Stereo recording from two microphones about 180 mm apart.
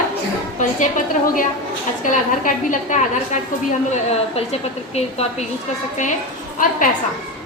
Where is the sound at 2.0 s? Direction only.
45° left (ahead or behind).